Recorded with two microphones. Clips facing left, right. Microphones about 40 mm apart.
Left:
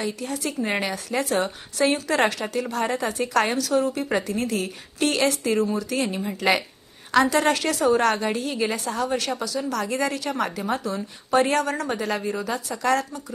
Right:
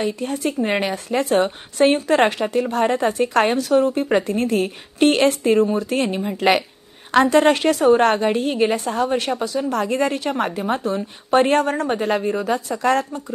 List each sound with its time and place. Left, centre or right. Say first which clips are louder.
0.0 s a woman's voice: right 6 dB; right